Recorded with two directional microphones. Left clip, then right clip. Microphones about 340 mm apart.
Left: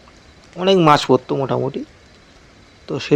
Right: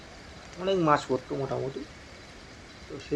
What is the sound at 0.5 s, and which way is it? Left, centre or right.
Speech, left.